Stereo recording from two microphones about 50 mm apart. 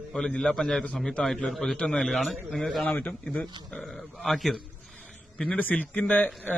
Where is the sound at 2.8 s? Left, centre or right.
Left.